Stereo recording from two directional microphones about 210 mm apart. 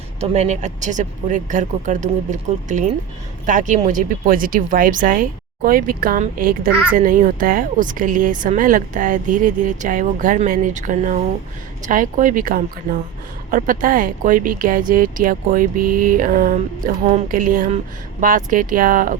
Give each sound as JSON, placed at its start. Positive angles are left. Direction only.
{"t": 0.2, "sound": "speech", "side_deg": -35}